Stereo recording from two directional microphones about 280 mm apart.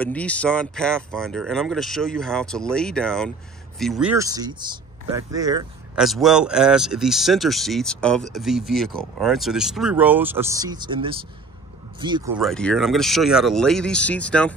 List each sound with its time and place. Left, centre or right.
0.0 s speech: centre
4.2 s speech: centre
5.9 s speech: centre
12.4 s speech: centre